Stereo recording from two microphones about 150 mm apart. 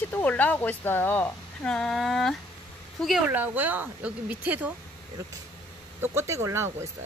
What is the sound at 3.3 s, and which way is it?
Speech, 10° right (ahead or behind).